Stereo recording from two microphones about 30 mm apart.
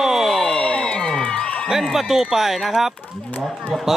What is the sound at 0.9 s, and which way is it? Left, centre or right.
Music, centre.